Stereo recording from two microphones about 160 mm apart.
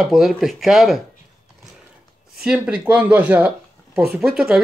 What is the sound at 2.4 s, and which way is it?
Speech, 5° right (ahead or behind).